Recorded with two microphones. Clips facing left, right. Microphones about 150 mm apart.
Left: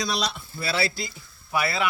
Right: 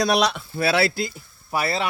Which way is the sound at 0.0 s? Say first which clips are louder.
Right 8 dB; 65° right (ahead or behind).